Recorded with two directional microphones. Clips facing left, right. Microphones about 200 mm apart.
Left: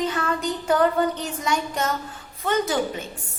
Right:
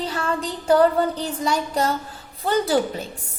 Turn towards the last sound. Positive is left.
turn(degrees=-35)  # may be behind; listen again after turning